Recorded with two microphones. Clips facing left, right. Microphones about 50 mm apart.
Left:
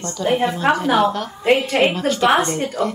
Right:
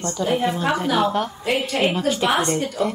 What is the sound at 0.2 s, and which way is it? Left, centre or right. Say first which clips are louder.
Speech: left 3 dB; centre.